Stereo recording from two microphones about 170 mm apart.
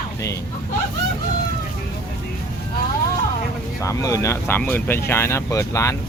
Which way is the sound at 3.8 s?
20° left (ahead or behind).